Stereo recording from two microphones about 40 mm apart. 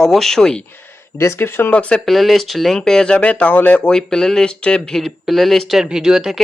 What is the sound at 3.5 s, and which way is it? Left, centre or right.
Speech, left.